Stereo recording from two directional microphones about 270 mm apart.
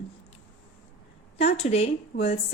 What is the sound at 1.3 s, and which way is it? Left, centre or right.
A woman's voice, left.